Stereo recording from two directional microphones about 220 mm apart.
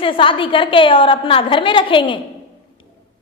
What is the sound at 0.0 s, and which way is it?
A woman's voice, 25° left (ahead or behind).